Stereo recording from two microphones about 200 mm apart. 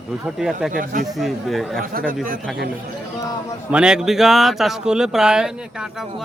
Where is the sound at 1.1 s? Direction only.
Centre (ahead or behind).